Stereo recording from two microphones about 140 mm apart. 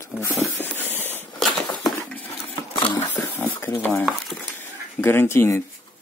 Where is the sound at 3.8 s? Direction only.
10° left (ahead or behind).